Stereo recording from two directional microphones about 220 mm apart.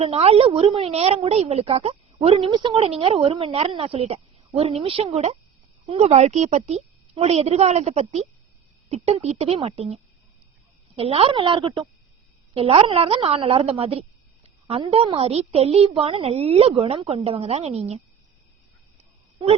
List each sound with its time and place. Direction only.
0.0 s a woman's voice: 25° right (ahead or behind)